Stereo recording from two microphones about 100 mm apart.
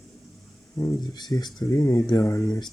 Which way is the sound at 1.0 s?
45° left (ahead or behind).